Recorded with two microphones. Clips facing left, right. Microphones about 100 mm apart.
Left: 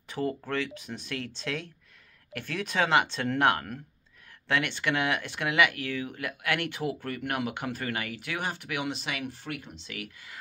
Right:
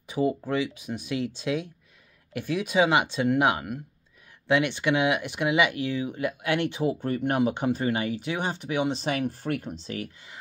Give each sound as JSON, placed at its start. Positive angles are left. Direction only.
{"t": 0.1, "sound": "speech", "side_deg": -10}